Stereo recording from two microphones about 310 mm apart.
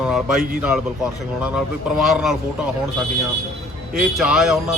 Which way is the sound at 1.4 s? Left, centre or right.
Centre.